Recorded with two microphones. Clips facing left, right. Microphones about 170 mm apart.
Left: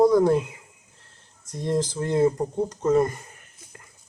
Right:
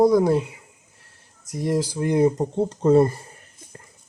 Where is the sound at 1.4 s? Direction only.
10° right (ahead or behind).